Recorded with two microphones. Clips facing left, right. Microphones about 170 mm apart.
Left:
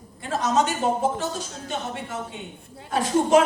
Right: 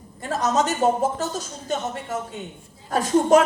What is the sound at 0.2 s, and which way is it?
A man's voice, 40° right (ahead or behind).